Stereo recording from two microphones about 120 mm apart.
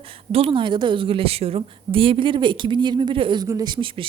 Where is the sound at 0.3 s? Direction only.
50° right (ahead or behind).